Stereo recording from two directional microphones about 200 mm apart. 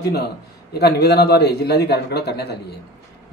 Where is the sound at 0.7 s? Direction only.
55° left (ahead or behind).